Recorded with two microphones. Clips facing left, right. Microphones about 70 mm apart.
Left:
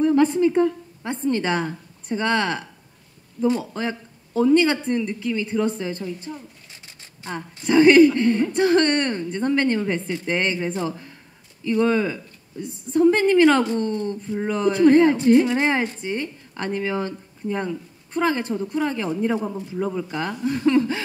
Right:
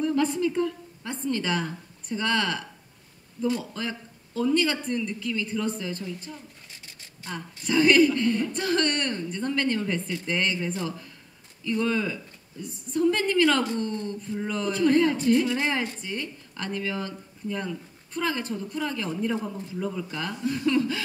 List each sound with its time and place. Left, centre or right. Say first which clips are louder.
0.0 s a woman's voice: left 7 dB; left